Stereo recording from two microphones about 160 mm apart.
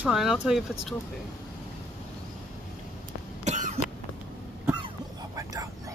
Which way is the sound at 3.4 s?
50° right (ahead or behind).